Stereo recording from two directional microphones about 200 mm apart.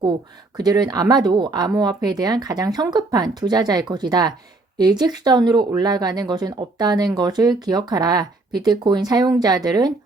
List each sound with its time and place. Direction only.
0.5 s speech: 20° right (ahead or behind)